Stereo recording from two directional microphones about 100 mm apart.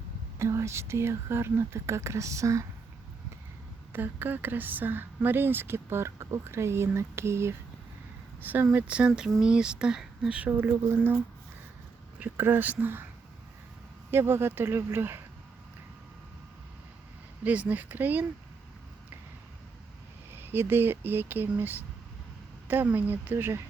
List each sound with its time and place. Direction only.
0.3 s speech: 30° right (ahead or behind)
3.9 s speech: 20° right (ahead or behind)
12.2 s speech: 20° right (ahead or behind)
14.1 s speech: 25° right (ahead or behind)
17.4 s speech: 15° right (ahead or behind)
20.3 s speech: 20° right (ahead or behind)